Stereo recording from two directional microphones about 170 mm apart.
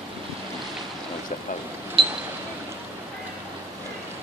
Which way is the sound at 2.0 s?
30° right (ahead or behind).